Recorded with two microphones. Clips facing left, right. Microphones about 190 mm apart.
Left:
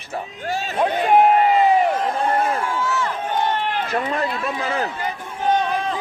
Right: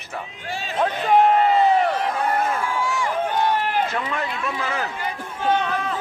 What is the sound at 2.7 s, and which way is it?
Run, 15° right (ahead or behind).